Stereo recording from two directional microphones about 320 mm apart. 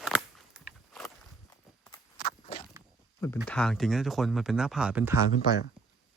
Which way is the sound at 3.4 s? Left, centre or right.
Centre.